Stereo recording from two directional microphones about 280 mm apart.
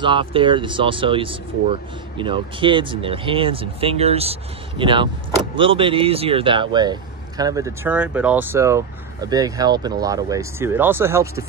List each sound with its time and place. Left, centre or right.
0.0 s speech: centre